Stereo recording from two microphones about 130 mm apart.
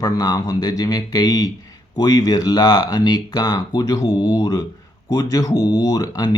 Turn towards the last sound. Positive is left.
turn(degrees=30)  # may be behind; listen again after turning